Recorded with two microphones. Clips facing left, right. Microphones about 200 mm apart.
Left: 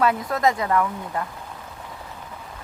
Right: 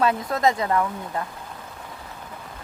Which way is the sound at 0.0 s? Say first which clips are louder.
Even; 25° right (ahead or behind).